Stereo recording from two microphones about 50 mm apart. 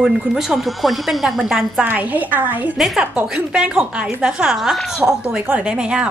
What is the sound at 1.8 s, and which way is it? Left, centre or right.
Speech, right.